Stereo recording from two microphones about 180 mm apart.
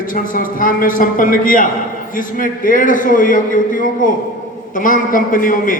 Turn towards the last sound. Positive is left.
turn(degrees=50)  # may be behind; listen again after turning